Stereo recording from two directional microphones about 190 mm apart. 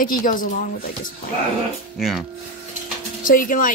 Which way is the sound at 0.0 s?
45° left (ahead or behind).